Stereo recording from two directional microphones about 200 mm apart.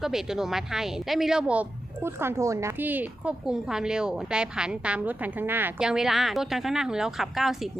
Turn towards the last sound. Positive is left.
turn(degrees=0)  # may be behind; listen again after turning